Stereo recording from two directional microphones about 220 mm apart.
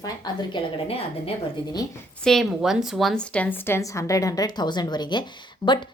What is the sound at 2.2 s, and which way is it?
A woman's voice, centre (ahead or behind).